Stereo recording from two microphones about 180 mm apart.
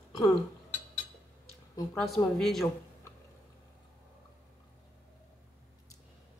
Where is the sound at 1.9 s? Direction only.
Centre (ahead or behind).